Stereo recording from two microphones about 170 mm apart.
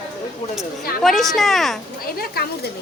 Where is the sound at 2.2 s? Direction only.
65° left (ahead or behind).